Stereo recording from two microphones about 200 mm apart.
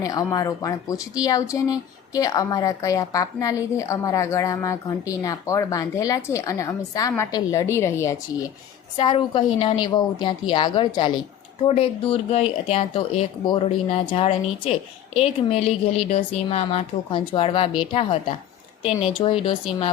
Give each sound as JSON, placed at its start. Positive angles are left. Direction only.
{"t": 0.0, "sound": "speech", "side_deg": 15}
{"t": 9.0, "sound": "speech", "side_deg": 25}